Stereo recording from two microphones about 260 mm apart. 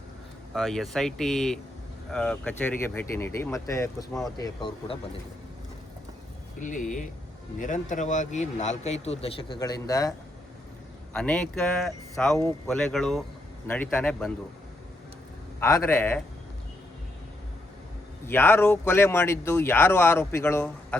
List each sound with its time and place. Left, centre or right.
0.5 s speech: centre
6.6 s a man's voice: left; by 14.3 s centre
15.6 s speech: centre
18.3 s speech: centre